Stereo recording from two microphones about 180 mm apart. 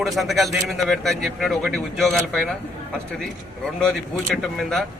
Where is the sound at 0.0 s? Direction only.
Centre (ahead or behind).